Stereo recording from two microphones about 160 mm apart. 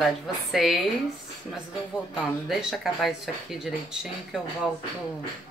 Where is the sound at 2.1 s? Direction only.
Centre (ahead or behind).